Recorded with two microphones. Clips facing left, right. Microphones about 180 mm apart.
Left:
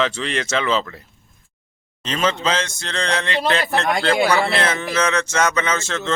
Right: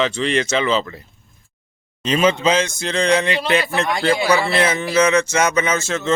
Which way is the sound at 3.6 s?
50° left (ahead or behind).